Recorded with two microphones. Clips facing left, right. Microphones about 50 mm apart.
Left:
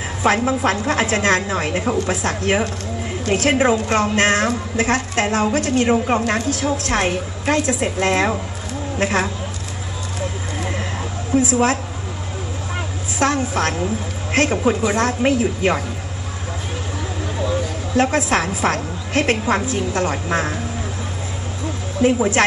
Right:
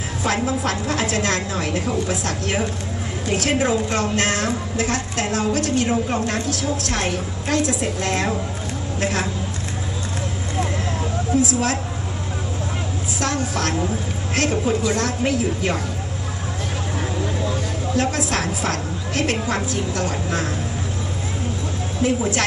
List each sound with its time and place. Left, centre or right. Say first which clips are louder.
0.2 s a woman's voice: left 5 dB; left
11.3 s a woman's voice: left 4 dB; left
13.2 s a woman's voice: left 5 dB; left
17.9 s a woman's voice: left 5 dB; left
22.0 s a woman's voice: left 4 dB; left